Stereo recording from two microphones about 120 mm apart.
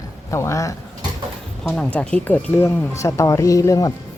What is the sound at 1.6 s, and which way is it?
Speech, 10° left (ahead or behind).